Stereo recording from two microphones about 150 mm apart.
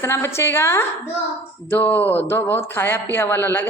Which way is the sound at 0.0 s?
15° left (ahead or behind).